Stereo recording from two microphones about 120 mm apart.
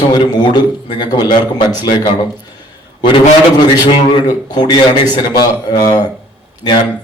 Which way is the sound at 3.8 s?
40° left (ahead or behind).